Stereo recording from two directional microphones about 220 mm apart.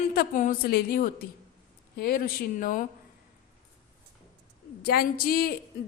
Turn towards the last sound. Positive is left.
turn(degrees=40)  # may be behind; listen again after turning